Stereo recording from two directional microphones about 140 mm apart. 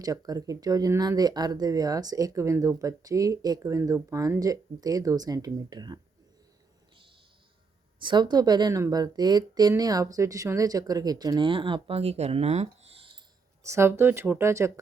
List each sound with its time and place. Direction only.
0.0 s speech: 25° right (ahead or behind)
7.9 s speech: 30° right (ahead or behind)
13.6 s speech: 20° right (ahead or behind)